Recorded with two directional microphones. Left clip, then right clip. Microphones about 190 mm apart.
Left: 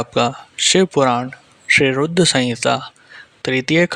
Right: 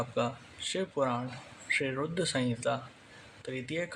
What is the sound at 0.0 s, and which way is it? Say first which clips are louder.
A man's voice: left 14 dB; 45° left (ahead or behind).